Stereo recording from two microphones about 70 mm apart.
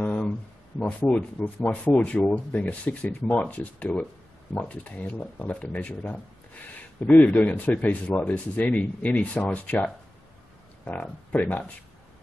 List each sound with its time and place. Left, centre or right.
0.0 s a sound: centre
0.7 s speech: left
10.9 s speech: centre